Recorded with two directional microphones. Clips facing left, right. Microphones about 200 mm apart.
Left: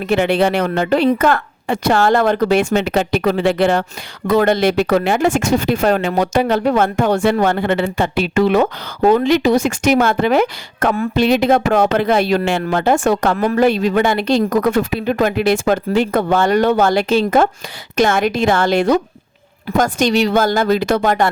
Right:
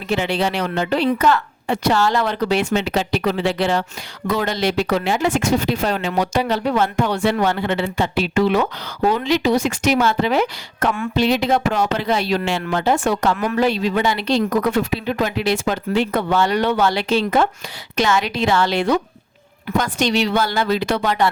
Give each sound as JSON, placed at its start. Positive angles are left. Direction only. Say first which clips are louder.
{"t": 0.1, "sound": "speech", "louder": "left 5 dB", "side_deg": 55}
{"t": 13.3, "sound": "speech", "louder": "left 5 dB", "side_deg": 35}
{"t": 13.6, "sound": "speech", "louder": "left 6 dB", "side_deg": 50}